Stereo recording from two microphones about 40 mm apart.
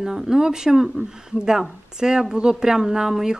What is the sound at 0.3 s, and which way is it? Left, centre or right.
Speech, centre.